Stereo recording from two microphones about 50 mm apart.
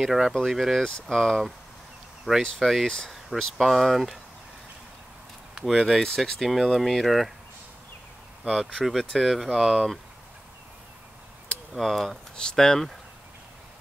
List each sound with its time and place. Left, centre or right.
0.0 s speech: centre
0.3 s speech: centre
0.6 s speech: centre
0.8 s speech: centre
2.3 s speech: centre
2.6 s speech: centre
3.3 s speech: centre
3.6 s speech: centre
5.7 s speech: centre
8.5 s speech: centre
11.7 s speech: centre
12.4 s speech: centre